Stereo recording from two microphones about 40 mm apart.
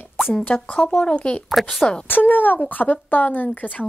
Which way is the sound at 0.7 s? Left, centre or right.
Left.